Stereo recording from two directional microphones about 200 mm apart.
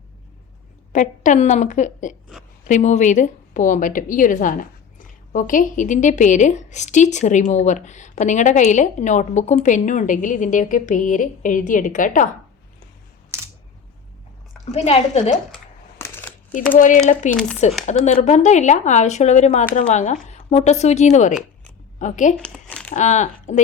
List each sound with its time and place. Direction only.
0.9 s a woman's voice: 40° left (ahead or behind)
14.6 s a woman's voice: 30° left (ahead or behind)
16.0 s a sound: 10° left (ahead or behind)
16.7 s a woman's voice: 40° left (ahead or behind)
22.4 s crumpling: 5° left (ahead or behind)
22.9 s speech: 35° left (ahead or behind)